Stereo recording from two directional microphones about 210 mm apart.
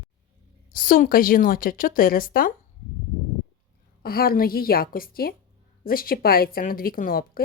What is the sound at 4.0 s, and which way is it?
A woman's voice, 45° left (ahead or behind).